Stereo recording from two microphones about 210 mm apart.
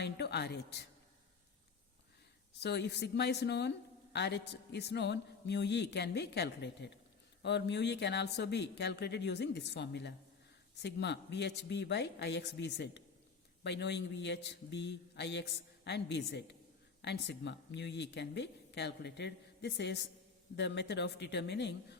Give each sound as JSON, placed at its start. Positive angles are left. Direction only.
{"t": 0.0, "sound": "speech", "side_deg": 55}
{"t": 2.6, "sound": "speech", "side_deg": 55}